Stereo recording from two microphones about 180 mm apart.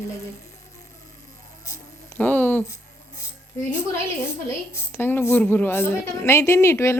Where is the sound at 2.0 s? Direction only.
10° left (ahead or behind).